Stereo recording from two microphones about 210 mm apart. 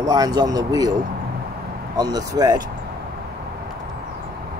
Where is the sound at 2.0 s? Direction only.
20° right (ahead or behind).